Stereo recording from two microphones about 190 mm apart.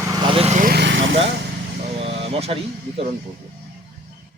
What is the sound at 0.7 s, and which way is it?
Vehicle, 65° right (ahead or behind).